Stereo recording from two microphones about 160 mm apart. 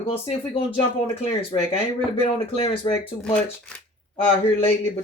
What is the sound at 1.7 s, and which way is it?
Speech, 35° left (ahead or behind).